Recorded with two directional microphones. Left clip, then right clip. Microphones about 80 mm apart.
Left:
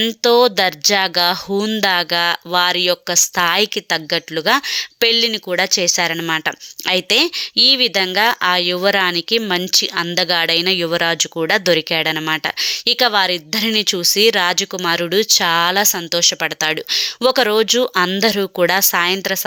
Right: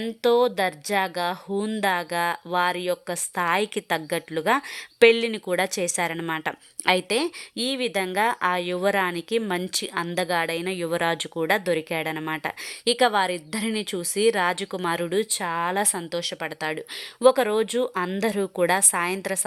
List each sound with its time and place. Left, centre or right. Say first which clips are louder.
0.2 s speech: left 7 dB; left
1.5 s speech: left 4 dB; left
2.0 s speech: left 9 dB; centre
3.8 s speech: left 7 dB; centre
6.2 s speech: left 9 dB; left
6.8 s speech: left 7 dB; centre
10.7 s speech: left 11 dB; left
10.9 s speech: left 8 dB; centre
15.1 s speech: left 11 dB; left